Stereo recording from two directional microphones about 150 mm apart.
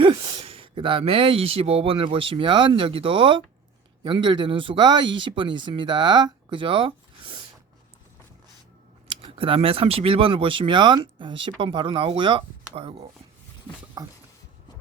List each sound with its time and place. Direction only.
0.0 s a sound: 30° right (ahead or behind)
2.1 s speech: 35° right (ahead or behind)
9.0 s speech: 35° right (ahead or behind)
14.0 s speech: 25° right (ahead or behind)